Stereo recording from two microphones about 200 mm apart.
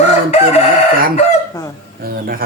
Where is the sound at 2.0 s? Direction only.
50° right (ahead or behind).